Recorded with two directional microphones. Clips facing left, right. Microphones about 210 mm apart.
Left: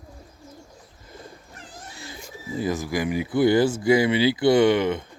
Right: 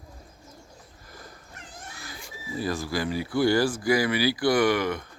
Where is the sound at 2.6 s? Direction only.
20° left (ahead or behind).